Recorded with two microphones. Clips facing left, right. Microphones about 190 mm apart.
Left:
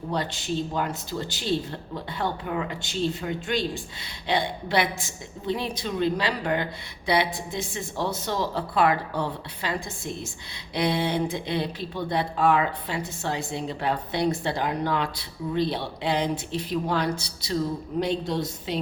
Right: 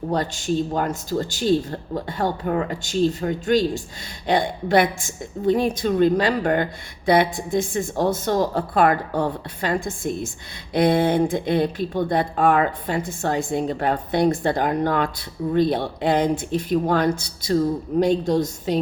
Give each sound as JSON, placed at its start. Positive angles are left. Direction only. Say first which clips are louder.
{"t": 0.1, "sound": "a woman's voice", "louder": "right 5 dB", "side_deg": -45}